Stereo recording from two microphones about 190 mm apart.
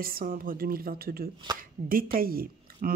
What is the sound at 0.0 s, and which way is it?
Speech, 50° right (ahead or behind).